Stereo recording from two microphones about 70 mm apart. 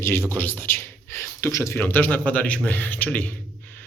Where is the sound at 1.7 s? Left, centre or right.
Left.